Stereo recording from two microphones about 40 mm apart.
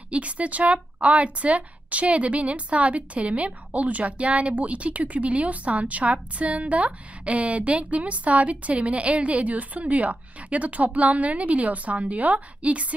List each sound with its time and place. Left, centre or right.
0.1 s speech: right